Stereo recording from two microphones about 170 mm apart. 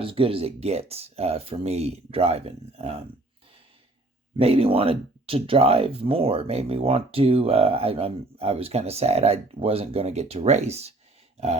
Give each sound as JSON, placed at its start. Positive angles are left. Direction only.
{"t": 0.0, "sound": "speech", "side_deg": -30}
{"t": 4.4, "sound": "speech", "side_deg": -35}